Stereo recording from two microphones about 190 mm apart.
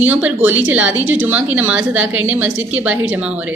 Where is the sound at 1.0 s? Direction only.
90° right.